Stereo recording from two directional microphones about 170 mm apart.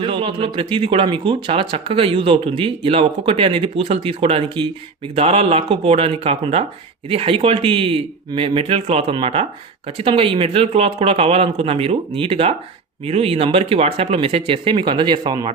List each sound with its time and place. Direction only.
0.0 s speech: 30° right (ahead or behind)